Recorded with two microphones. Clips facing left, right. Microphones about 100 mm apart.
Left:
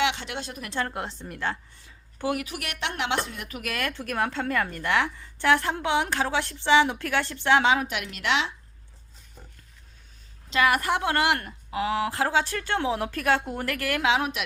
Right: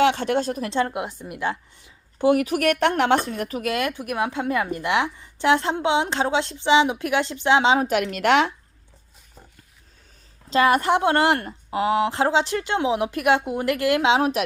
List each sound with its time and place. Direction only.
0.0 s speech: 45° right (ahead or behind)
0.7 s a woman's voice: 20° right (ahead or behind)
2.3 s speech: 45° right (ahead or behind)
3.6 s speech: 20° right (ahead or behind)
7.9 s speech: 45° right (ahead or behind)
10.5 s speech: 30° right (ahead or behind)